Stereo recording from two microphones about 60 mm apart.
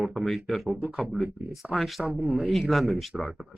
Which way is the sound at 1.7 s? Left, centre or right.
Centre.